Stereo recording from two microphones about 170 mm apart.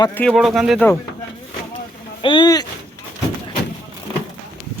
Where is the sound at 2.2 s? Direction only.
30° left (ahead or behind).